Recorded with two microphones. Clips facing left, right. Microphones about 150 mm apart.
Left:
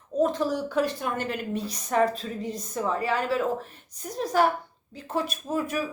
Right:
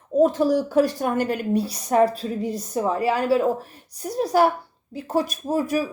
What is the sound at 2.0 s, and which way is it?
Speech, 10° right (ahead or behind).